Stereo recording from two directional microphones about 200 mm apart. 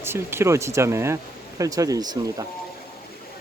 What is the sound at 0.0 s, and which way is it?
Speech, 10° right (ahead or behind).